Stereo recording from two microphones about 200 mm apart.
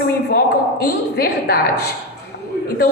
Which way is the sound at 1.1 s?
50° left (ahead or behind).